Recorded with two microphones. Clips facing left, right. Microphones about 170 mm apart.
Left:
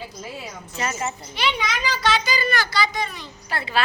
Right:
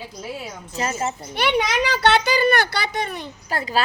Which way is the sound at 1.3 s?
55° right (ahead or behind).